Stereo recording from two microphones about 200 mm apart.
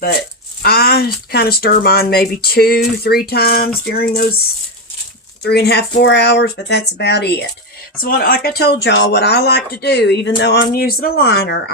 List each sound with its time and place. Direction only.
0.6 s speech: 50° left (ahead or behind)
5.4 s speech: 55° left (ahead or behind)